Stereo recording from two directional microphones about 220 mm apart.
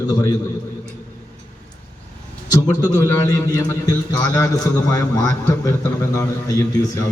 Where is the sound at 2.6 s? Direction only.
15° left (ahead or behind).